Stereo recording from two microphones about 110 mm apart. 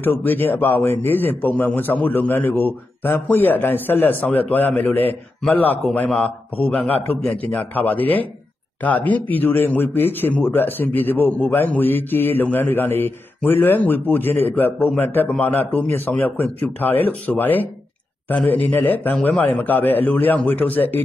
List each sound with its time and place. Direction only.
0.0 s a man's voice: 20° left (ahead or behind)